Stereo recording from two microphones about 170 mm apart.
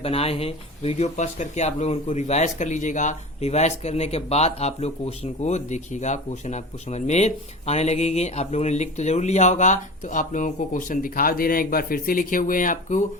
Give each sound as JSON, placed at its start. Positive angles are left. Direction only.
{"t": 0.0, "sound": "speech", "side_deg": 35}